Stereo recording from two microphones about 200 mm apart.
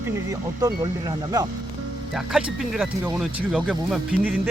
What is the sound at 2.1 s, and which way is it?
Speech, centre (ahead or behind).